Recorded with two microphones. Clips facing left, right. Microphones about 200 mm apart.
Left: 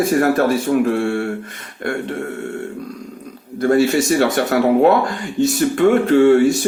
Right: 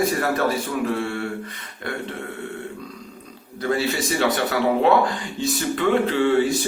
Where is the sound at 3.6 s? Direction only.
45° left (ahead or behind).